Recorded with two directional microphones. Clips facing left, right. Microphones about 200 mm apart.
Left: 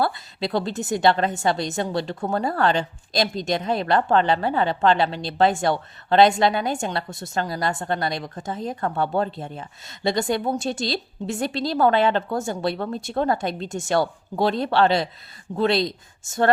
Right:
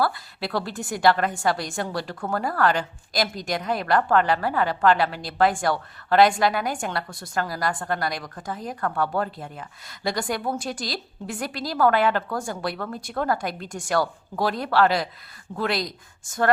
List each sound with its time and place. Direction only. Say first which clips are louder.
0.0 s a woman's voice: left 1 dB; 20° left (ahead or behind)